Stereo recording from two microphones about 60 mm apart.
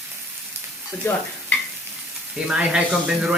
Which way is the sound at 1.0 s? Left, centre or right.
Left.